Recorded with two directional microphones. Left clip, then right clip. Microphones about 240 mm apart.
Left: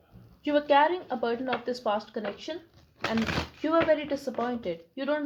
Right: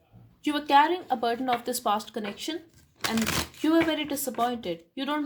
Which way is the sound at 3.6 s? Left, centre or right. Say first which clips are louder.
Left 1 dB; right.